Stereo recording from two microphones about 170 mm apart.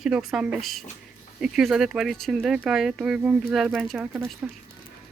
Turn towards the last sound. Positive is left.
turn(degrees=-5)  # may be behind; listen again after turning